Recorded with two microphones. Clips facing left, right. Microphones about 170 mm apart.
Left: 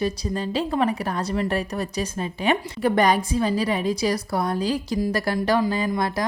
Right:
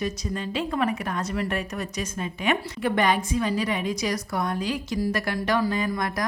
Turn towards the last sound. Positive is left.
turn(degrees=30)  # may be behind; listen again after turning